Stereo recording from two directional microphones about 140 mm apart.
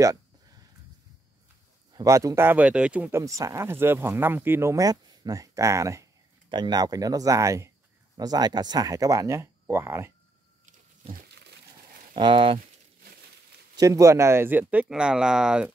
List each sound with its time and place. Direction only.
0.0 s a sound: 25° right (ahead or behind)
1.9 s speech: 25° right (ahead or behind)
12.2 s speech: 35° right (ahead or behind)
13.7 s speech: 25° right (ahead or behind); by 15.7 s 5° right (ahead or behind)